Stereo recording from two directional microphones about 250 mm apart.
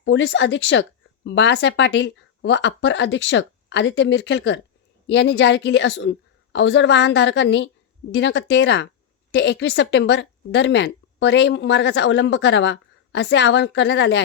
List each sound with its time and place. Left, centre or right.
0.0 s speech: left